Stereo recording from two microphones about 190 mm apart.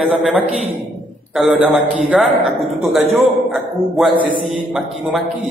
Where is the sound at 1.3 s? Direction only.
5° right (ahead or behind).